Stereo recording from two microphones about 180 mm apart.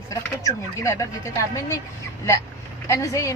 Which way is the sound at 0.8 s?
15° left (ahead or behind).